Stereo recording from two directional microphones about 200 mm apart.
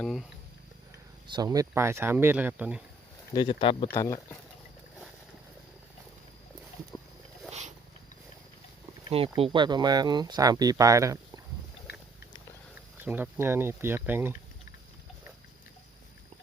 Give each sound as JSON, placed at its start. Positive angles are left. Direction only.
{"t": 0.0, "sound": "speech", "side_deg": 0}
{"t": 1.3, "sound": "speech", "side_deg": -20}
{"t": 3.3, "sound": "speech", "side_deg": 25}
{"t": 3.9, "sound": "speech", "side_deg": 15}
{"t": 9.0, "sound": "speech", "side_deg": -30}
{"t": 11.9, "sound": "a sound", "side_deg": 55}
{"t": 13.0, "sound": "speech", "side_deg": -10}